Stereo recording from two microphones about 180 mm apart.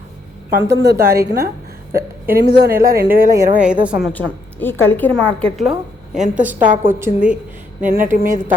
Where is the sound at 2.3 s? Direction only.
65° right (ahead or behind).